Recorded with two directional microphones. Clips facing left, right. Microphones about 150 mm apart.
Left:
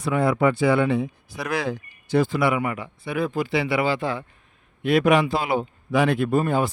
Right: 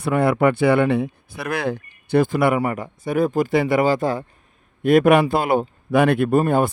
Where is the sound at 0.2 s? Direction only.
65° right (ahead or behind).